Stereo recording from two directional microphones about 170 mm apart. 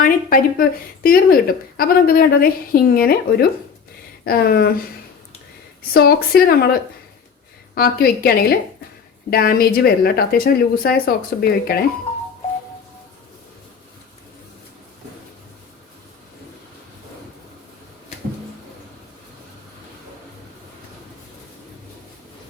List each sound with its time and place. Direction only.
0.0 s a woman's voice: 55° left (ahead or behind)
5.9 s a woman's voice: 65° left (ahead or behind)
7.8 s a woman's voice: 65° left (ahead or behind)